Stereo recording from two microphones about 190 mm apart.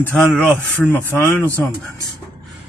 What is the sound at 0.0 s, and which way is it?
Speech, 5° left (ahead or behind).